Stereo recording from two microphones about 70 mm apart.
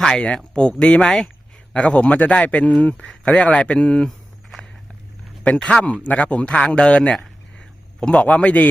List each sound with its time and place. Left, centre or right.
0.0 s a man's voice: centre
5.4 s a man's voice: centre
7.2 s a sound: centre